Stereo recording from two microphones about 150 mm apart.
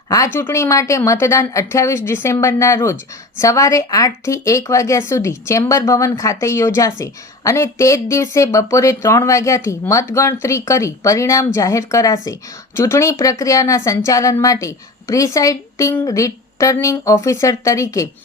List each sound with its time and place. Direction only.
0.3 s a woman's voice: 15° left (ahead or behind)